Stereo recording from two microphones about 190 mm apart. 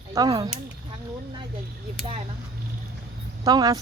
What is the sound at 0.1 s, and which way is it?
Speech, 20° right (ahead or behind).